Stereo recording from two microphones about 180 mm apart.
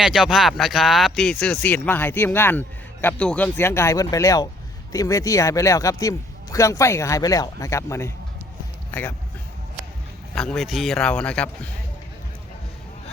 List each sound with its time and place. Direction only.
0.0 s speech: centre (ahead or behind)
10.3 s a man's voice: centre (ahead or behind)